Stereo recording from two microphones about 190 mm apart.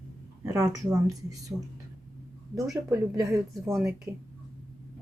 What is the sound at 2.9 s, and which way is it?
Speech, 15° right (ahead or behind).